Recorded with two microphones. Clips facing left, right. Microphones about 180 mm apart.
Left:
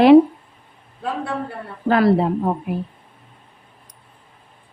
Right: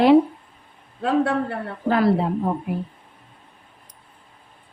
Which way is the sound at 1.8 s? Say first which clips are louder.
Left 3 dB; 80° left.